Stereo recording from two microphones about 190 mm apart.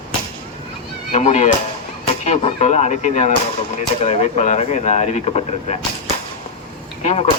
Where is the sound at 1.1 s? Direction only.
35° left (ahead or behind).